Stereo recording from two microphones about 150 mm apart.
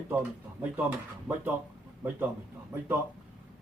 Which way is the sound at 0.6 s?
10° right (ahead or behind).